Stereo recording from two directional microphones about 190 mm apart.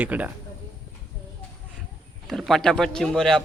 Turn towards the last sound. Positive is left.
turn(degrees=0)  # may be behind; listen again after turning